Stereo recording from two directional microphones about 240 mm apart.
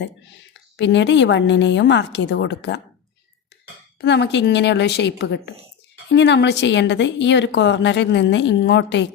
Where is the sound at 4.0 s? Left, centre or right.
Left.